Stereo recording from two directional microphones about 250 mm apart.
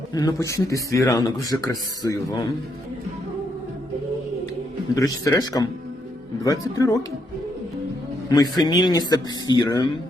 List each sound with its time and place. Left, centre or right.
0.1 s speech: centre
4.9 s speech: centre
8.3 s speech: centre